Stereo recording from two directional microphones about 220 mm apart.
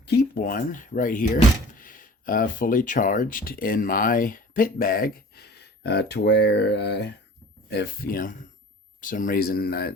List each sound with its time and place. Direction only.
0.0 s speech: 45° left (ahead or behind)